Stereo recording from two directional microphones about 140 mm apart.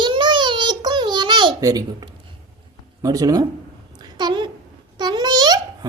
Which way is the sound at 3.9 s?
30° right (ahead or behind).